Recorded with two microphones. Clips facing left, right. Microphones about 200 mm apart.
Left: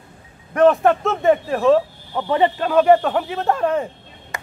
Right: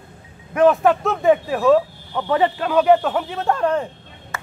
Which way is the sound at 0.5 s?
Centre (ahead or behind).